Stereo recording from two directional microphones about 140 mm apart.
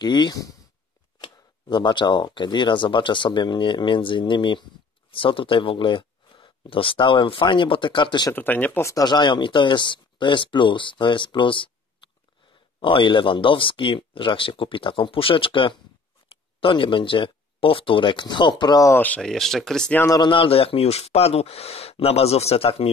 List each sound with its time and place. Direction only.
0.0 s speech: 30° left (ahead or behind)
8.3 s speech: 15° left (ahead or behind)
18.9 s speech: 10° left (ahead or behind)
20.2 s speech: 40° left (ahead or behind)